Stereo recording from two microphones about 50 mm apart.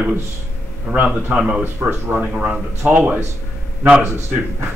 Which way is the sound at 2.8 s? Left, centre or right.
Right.